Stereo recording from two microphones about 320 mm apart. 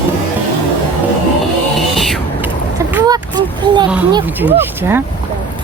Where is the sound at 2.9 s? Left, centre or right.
Centre.